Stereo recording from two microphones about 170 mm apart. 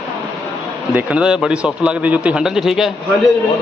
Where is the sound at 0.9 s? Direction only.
5° right (ahead or behind).